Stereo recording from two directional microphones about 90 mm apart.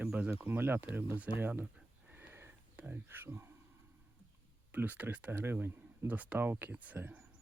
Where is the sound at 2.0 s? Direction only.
20° right (ahead or behind).